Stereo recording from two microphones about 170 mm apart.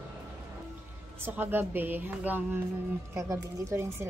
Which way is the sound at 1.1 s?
10° right (ahead or behind).